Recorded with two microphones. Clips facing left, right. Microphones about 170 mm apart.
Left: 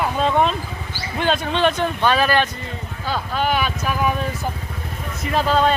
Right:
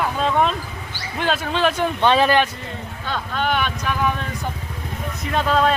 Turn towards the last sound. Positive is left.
turn(degrees=0)  # may be behind; listen again after turning